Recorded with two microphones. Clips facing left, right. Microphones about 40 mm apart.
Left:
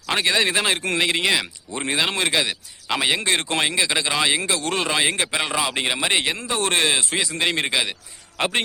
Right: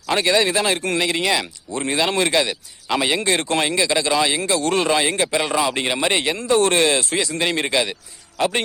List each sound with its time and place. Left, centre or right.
0.1 s speech: centre
2.0 s speech: centre
8.4 s a man's voice: left